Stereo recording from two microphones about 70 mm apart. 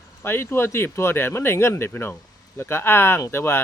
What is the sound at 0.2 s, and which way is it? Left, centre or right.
Speech, left.